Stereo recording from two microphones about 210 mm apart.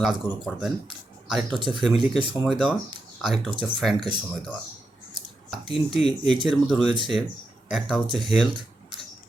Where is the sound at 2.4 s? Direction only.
5° right (ahead or behind).